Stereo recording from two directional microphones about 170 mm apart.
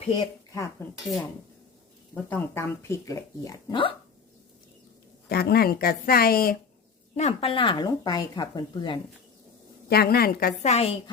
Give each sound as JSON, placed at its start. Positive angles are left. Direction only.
{"t": 0.2, "sound": "speech", "side_deg": 20}
{"t": 0.9, "sound": "dishes", "side_deg": 0}
{"t": 2.3, "sound": "speech", "side_deg": 15}
{"t": 5.3, "sound": "a woman's voice", "side_deg": 65}
{"t": 7.2, "sound": "speech", "side_deg": 35}
{"t": 9.9, "sound": "a woman's voice", "side_deg": 65}
{"t": 10.6, "sound": "a woman's voice", "side_deg": 40}